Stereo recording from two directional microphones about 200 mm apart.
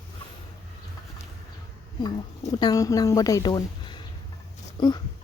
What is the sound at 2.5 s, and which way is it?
A woman's voice, 20° left (ahead or behind).